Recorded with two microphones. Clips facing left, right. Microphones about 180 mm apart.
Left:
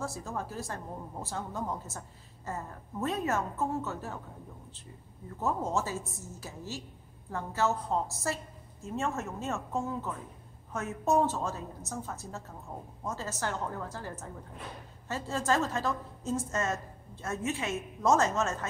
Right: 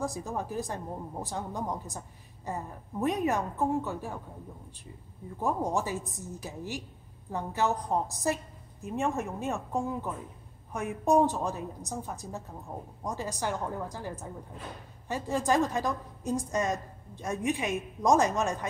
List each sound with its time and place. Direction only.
0.0 s a woman's voice: 15° right (ahead or behind)
5.4 s a woman's voice: 15° right (ahead or behind)